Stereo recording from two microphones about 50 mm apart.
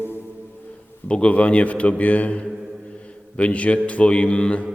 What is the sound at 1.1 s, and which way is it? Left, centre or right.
A man's voice, left.